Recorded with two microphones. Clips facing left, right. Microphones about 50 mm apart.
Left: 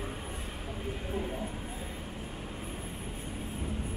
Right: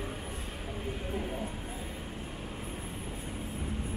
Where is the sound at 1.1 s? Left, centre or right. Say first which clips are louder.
Left 2 dB; centre.